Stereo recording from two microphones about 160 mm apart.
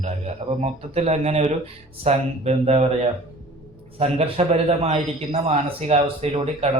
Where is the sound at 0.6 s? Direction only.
40° right (ahead or behind).